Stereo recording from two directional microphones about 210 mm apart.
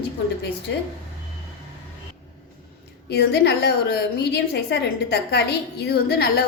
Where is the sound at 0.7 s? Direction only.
60° left (ahead or behind).